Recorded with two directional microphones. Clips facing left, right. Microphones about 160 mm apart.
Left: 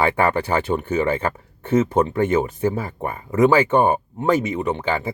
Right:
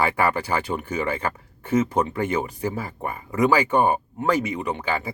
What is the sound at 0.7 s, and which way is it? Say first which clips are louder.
Speech: left 5 dB; 25° left (ahead or behind).